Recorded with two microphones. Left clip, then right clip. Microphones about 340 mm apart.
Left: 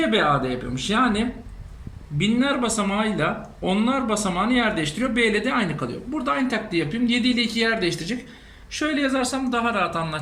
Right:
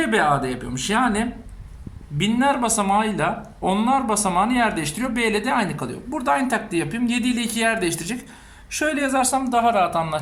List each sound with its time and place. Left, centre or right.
0.0 s speech: centre
2.1 s speech: centre